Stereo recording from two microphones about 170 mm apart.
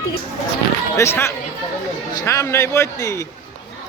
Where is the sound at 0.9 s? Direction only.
15° left (ahead or behind).